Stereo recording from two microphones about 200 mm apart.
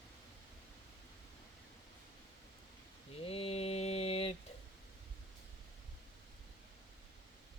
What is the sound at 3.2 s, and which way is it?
Mantra, 30° left (ahead or behind).